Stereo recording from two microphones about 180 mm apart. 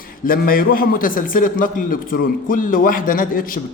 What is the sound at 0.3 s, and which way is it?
A man's voice, 50° left (ahead or behind).